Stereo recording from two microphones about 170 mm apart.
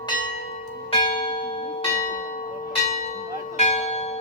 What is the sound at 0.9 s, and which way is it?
Church bell, 30° left (ahead or behind).